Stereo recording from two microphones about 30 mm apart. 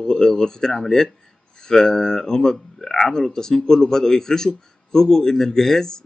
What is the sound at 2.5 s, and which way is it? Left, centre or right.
A man's voice, centre.